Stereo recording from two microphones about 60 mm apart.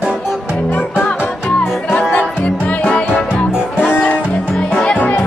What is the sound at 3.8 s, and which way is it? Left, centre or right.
Music, left.